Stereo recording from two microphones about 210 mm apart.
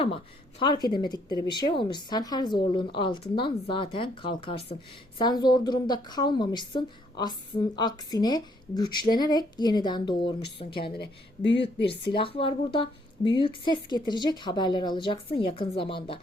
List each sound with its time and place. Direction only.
0.6 s speech: 20° left (ahead or behind)
10.9 s speech: 55° left (ahead or behind)
12.1 s speech: 25° left (ahead or behind)